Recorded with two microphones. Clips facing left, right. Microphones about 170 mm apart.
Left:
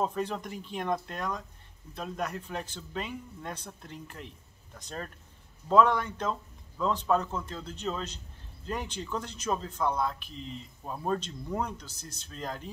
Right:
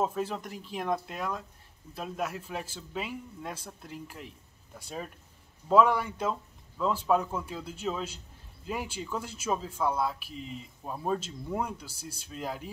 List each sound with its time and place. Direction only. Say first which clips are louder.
0.0 s speech: even; 5° right (ahead or behind)